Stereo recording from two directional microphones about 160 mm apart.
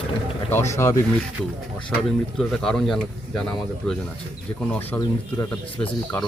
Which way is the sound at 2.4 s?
5° left (ahead or behind).